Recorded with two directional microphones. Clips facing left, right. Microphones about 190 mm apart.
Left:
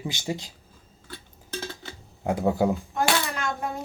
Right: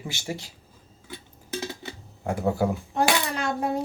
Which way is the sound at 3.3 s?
30° right (ahead or behind).